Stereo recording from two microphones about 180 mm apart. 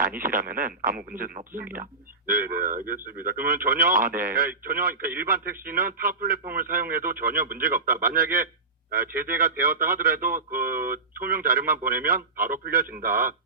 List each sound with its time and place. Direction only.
0.2 s speech: 55° right (ahead or behind)